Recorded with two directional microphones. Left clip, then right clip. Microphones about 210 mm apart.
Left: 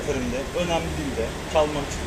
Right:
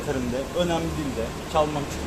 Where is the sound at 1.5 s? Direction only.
40° right (ahead or behind).